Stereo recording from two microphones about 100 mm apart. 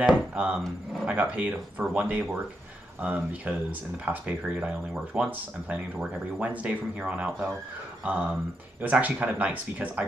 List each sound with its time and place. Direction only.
0.0 s speech: 10° right (ahead or behind)